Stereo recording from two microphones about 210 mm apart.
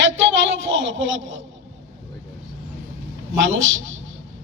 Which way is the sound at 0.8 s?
65° right (ahead or behind).